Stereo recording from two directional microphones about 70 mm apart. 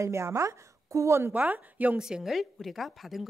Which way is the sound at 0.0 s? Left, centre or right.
Right.